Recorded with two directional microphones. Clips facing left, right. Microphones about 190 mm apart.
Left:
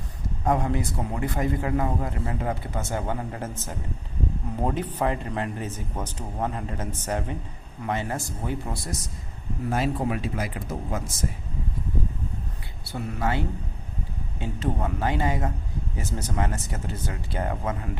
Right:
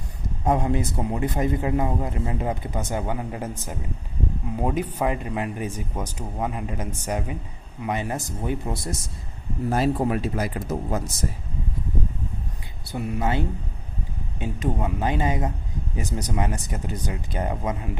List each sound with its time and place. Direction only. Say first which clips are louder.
0.4 s a man's voice: right 2 dB; 20° right (ahead or behind)
9.6 s speech: right 4 dB; 40° right (ahead or behind)
12.8 s speech: right 2 dB; 15° right (ahead or behind)